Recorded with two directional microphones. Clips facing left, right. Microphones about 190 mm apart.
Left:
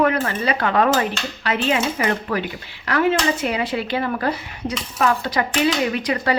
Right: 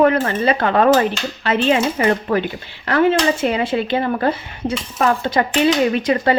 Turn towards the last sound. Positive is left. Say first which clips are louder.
# right 5 dB
turn(degrees=-25)  # may be behind; listen again after turning